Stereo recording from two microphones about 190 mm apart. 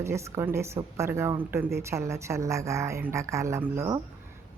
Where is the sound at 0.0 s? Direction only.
15° right (ahead or behind).